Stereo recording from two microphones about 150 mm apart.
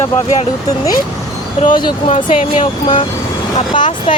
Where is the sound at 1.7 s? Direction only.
30° left (ahead or behind).